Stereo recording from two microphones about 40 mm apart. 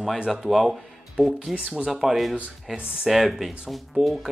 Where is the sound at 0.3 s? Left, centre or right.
Centre.